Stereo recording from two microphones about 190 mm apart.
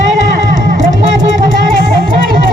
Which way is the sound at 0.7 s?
40° right (ahead or behind).